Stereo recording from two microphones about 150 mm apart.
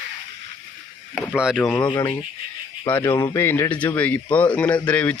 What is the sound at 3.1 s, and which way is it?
Speech, 30° left (ahead or behind).